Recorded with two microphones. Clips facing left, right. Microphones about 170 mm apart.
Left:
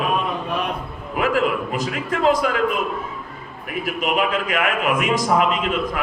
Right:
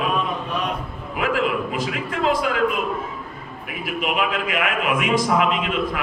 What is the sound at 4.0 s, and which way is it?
A man's voice, 45° left (ahead or behind).